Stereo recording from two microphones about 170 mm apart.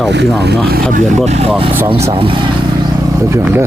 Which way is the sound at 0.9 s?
45° right (ahead or behind).